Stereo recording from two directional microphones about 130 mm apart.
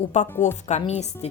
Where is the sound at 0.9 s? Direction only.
60° left (ahead or behind).